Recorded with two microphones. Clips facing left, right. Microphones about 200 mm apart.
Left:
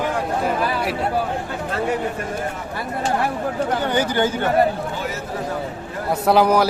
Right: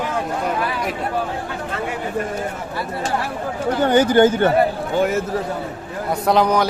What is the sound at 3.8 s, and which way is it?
Speech, 50° right (ahead or behind).